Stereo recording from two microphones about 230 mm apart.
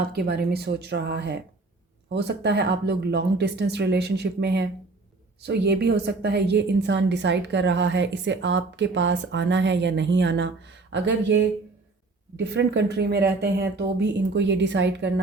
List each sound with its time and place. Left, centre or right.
0.1 s a woman's voice: right